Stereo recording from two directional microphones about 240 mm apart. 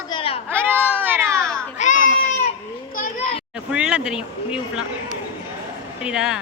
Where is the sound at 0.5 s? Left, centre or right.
Centre.